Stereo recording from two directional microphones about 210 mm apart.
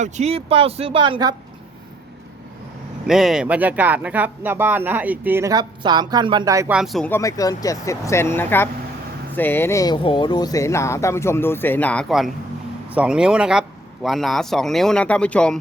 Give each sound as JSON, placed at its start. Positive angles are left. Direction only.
{"t": 0.0, "sound": "speech", "side_deg": -30}
{"t": 3.1, "sound": "speech", "side_deg": 0}
{"t": 6.7, "sound": "a man's voice", "side_deg": 0}